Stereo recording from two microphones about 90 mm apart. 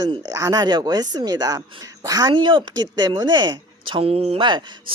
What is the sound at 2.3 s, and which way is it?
A woman's voice, 65° right (ahead or behind).